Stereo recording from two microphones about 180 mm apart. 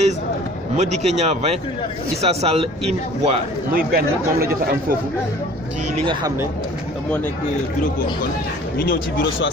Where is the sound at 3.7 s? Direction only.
60° right (ahead or behind).